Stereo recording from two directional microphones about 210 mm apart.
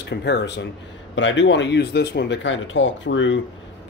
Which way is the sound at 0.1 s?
55° left (ahead or behind).